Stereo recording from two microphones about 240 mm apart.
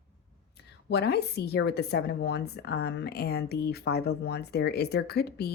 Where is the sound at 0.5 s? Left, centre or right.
Left.